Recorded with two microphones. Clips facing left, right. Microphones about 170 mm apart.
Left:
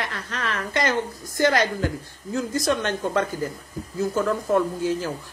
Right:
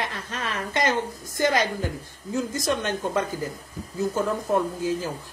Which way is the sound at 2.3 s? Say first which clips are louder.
Left 2 dB; 20° right (ahead or behind).